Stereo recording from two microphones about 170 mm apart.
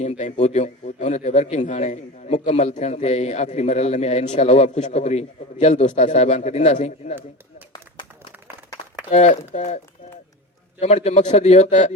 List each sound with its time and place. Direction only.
0.0 s a man's voice: 45° left (ahead or behind)
9.0 s a man's voice: 40° left (ahead or behind)